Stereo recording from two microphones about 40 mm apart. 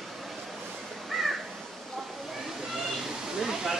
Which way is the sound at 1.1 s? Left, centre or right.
Centre.